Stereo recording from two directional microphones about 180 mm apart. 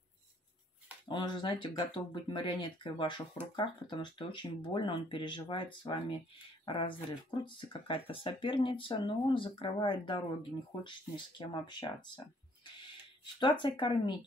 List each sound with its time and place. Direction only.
1.0 s speech: 25° left (ahead or behind)
13.2 s speech: 25° left (ahead or behind)